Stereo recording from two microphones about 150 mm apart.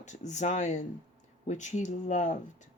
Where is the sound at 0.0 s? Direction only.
55° left (ahead or behind).